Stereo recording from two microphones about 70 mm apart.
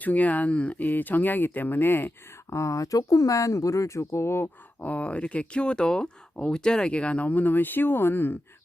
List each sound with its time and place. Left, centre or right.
0.0 s speech: left
2.5 s speech: left
4.8 s speech: left